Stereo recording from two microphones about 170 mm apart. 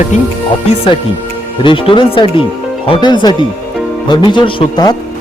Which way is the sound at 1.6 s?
30° left (ahead or behind).